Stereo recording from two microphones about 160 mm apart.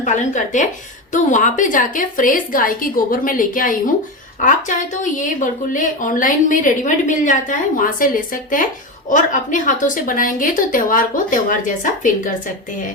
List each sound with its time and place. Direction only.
0.0 s a woman's voice: 50° left (ahead or behind)